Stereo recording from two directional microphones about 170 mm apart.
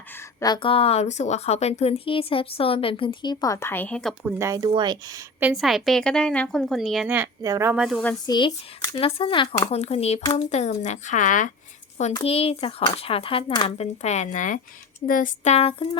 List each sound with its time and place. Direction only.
0.3 s a woman's voice: 25° left (ahead or behind); by 4.1 s 5° left (ahead or behind)
4.2 s speech: 15° right (ahead or behind)
5.4 s a woman's voice: 5° right (ahead or behind)
8.3 s speech: 25° left (ahead or behind)
9.0 s a woman's voice: 35° left (ahead or behind); by 11.5 s 50° left (ahead or behind)
12.2 s a woman's voice: 35° left (ahead or behind); by 15.5 s 50° left (ahead or behind)
15.5 s a woman's voice: 35° left (ahead or behind)